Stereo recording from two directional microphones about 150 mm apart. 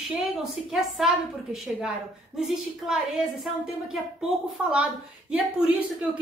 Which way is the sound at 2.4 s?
5° right (ahead or behind).